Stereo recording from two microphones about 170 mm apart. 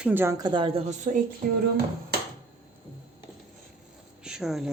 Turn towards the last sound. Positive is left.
turn(degrees=-5)  # may be behind; listen again after turning